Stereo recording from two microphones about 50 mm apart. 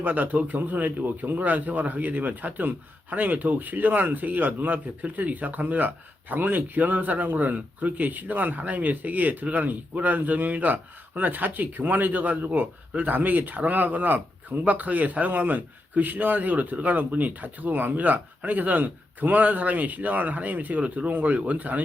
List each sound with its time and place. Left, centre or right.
0.0 s a man's voice: right